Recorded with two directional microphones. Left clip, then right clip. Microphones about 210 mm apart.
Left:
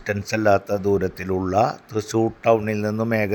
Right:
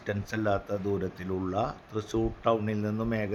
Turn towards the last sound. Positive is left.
turn(degrees=25)  # may be behind; listen again after turning